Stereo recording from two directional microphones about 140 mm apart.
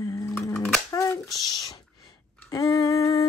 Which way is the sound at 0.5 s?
5° left (ahead or behind).